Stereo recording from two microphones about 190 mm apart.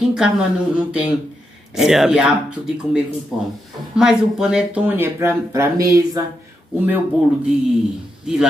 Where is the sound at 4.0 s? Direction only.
5° right (ahead or behind).